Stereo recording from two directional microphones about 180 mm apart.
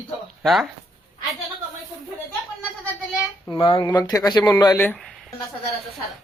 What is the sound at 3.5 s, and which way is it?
Speech, 25° left (ahead or behind).